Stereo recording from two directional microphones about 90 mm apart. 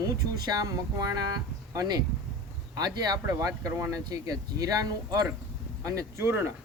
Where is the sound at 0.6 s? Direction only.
40° right (ahead or behind).